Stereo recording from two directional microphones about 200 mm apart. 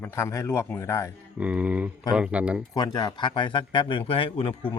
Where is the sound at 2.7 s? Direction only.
20° left (ahead or behind).